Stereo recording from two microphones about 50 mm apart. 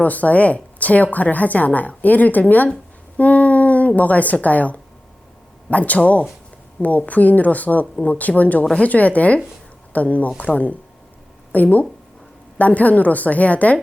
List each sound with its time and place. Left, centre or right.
0.0 s a woman's voice: left